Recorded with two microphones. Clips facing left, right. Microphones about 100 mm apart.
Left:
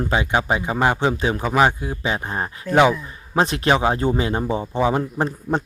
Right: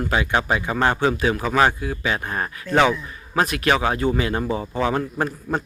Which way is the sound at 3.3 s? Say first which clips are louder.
Left 2 dB; 25° left (ahead or behind).